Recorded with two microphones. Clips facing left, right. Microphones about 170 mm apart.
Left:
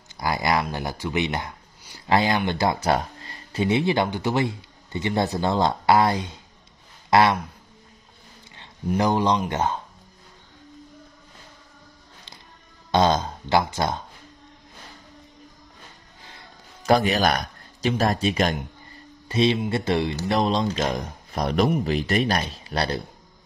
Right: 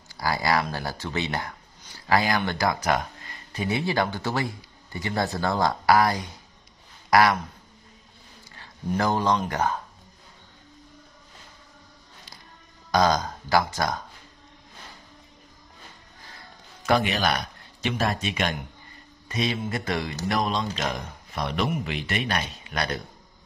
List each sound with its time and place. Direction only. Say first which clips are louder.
0.2 s speech: left 1 dB; 20° left (ahead or behind)
8.8 s speech: left 3 dB; 15° left (ahead or behind)
12.9 s speech: left 2 dB; 25° left (ahead or behind)
16.8 s speech: left 4 dB; 35° left (ahead or behind)